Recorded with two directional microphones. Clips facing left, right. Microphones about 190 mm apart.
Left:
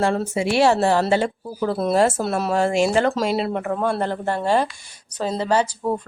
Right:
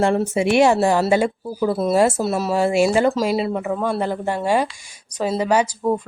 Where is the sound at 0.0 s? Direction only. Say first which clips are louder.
Right 3 dB; 20° right (ahead or behind).